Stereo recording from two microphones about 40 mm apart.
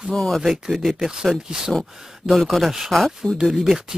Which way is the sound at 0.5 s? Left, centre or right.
Centre.